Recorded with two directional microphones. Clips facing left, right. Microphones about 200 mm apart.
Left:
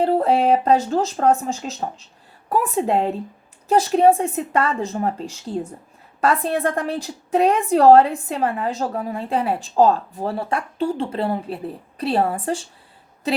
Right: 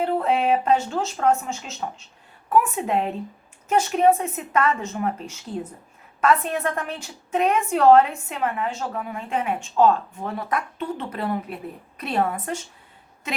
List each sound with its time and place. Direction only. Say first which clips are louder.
0.0 s a woman's voice: left 4 dB; 35° left (ahead or behind)